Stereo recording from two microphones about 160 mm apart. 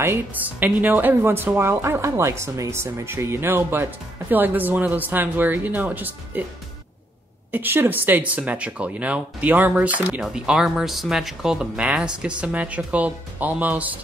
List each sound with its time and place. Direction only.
0.0 s a woman's voice: 10° right (ahead or behind)
7.5 s a woman's voice: 10° right (ahead or behind)